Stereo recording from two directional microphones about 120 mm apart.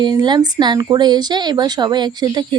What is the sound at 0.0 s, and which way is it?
Speech, 35° right (ahead or behind).